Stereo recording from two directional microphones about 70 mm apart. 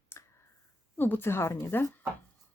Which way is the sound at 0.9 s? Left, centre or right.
Left.